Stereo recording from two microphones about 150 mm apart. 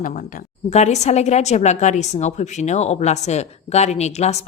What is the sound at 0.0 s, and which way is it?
Speech, 60° left (ahead or behind).